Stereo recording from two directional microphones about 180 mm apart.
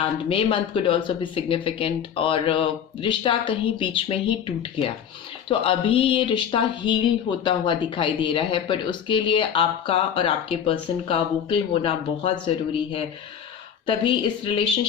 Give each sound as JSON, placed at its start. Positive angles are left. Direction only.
{"t": 0.3, "sound": "speech", "side_deg": 30}
{"t": 13.8, "sound": "speech", "side_deg": 30}